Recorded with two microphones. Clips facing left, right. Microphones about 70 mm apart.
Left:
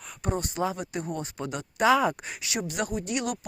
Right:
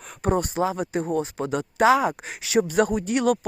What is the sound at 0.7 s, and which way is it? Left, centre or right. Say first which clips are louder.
Speech: right 6 dB; right.